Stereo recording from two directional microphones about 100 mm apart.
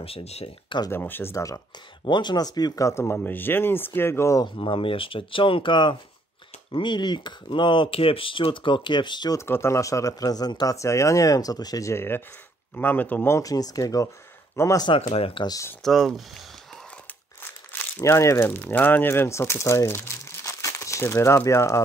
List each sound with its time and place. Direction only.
0.0 s speech: 85° left
0.9 s speech: 20° left (ahead or behind)
1.3 s speech: 35° left (ahead or behind)
2.0 s speech: 50° left (ahead or behind); by 4.4 s 25° left (ahead or behind)
4.6 s speech: 60° left (ahead or behind)
9.5 s speech: 25° left (ahead or behind)
13.4 s speech: 35° left (ahead or behind)
15.0 s speech: 80° left
15.8 s speech: centre (ahead or behind)
17.4 s speech: 20° left (ahead or behind)